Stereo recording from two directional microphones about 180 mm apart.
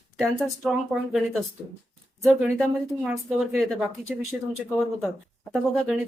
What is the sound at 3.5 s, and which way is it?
Speech, centre (ahead or behind).